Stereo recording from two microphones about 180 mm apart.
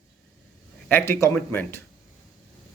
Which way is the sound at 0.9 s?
15° left (ahead or behind).